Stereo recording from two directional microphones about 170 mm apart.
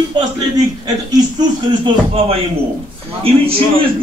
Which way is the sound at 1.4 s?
30° right (ahead or behind).